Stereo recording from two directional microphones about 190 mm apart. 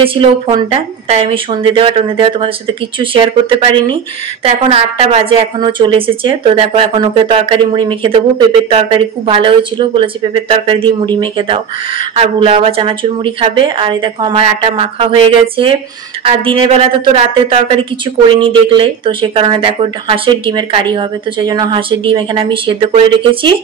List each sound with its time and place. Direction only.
0.0 s a woman's voice: 30° right (ahead or behind)